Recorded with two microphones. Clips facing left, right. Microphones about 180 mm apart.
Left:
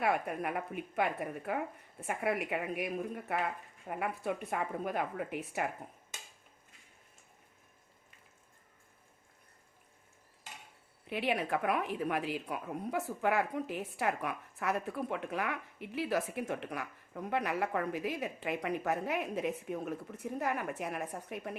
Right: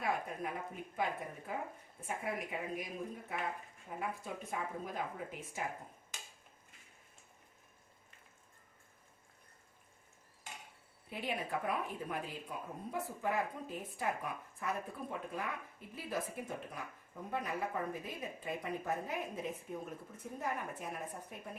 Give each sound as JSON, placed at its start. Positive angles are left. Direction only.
{"t": 0.0, "sound": "a woman's voice", "side_deg": 70}
{"t": 11.0, "sound": "a woman's voice", "side_deg": 75}